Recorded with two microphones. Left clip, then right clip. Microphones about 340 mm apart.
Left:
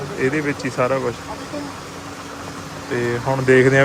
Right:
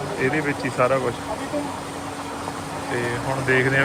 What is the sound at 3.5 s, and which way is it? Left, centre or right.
Speech, centre.